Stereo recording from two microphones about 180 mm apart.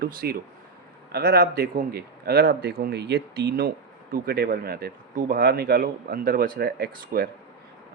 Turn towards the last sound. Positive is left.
turn(degrees=-55)  # may be behind; listen again after turning